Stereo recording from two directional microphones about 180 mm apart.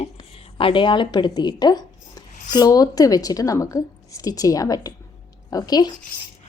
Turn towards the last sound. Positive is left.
turn(degrees=20)  # may be behind; listen again after turning